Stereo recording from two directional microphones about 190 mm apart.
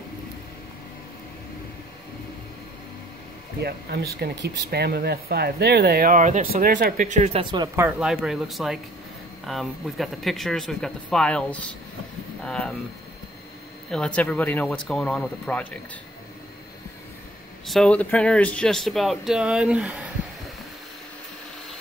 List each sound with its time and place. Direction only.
3.6 s speech: 55° right (ahead or behind); by 7.4 s 35° right (ahead or behind)
7.5 s speech: 15° right (ahead or behind); by 11.4 s 5° left (ahead or behind)
12.4 s speech: 5° left (ahead or behind)
13.8 s speech: 5° left (ahead or behind)
17.6 s speech: 5° left (ahead or behind)